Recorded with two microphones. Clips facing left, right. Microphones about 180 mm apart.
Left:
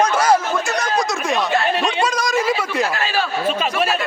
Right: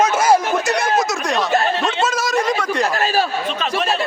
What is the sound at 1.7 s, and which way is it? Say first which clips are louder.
Speech: even; 15° left (ahead or behind).